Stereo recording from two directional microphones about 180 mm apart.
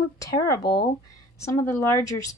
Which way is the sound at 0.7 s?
60° left (ahead or behind).